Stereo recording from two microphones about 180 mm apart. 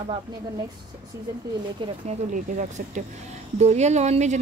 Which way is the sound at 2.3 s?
45° right (ahead or behind).